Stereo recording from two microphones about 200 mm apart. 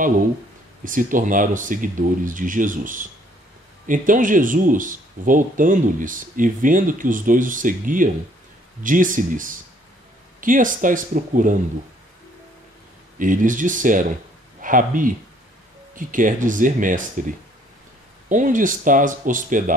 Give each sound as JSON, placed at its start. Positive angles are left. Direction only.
{"t": 0.8, "sound": "speech", "side_deg": -40}
{"t": 13.2, "sound": "speech", "side_deg": -40}
{"t": 18.3, "sound": "speech", "side_deg": -40}